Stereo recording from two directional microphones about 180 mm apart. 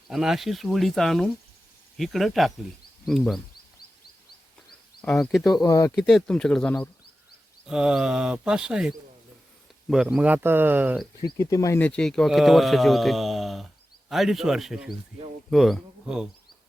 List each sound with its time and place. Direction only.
0.1 s speech: centre (ahead or behind)
5.0 s speech: 5° left (ahead or behind)
5.6 s speech: 20° left (ahead or behind)
5.9 s speech: centre (ahead or behind)
9.9 s speech: centre (ahead or behind)
11.3 s speech: 20° left (ahead or behind); by 16.3 s 5° right (ahead or behind)